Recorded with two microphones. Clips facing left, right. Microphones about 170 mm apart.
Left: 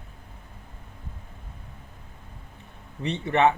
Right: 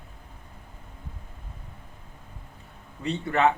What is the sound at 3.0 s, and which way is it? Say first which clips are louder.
Speech: left 2 dB; 20° left (ahead or behind).